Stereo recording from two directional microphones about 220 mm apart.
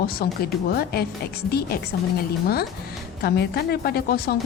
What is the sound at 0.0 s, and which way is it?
A woman's voice, 45° left (ahead or behind).